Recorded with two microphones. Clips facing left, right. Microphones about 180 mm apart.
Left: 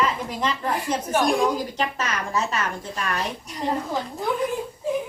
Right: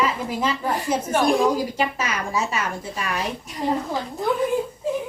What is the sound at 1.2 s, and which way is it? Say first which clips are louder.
A woman's voice: right 2 dB; centre (ahead or behind).